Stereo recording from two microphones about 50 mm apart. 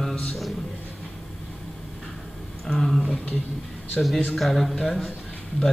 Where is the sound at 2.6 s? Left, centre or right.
Centre.